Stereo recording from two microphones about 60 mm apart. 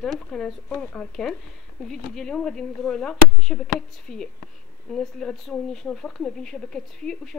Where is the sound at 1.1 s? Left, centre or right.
Centre.